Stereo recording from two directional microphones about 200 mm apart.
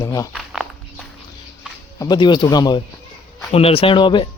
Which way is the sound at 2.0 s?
20° left (ahead or behind).